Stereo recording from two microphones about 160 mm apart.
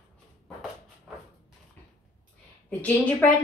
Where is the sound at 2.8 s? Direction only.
10° left (ahead or behind).